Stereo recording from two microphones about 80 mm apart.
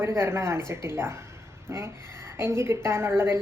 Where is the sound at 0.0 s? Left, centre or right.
Right.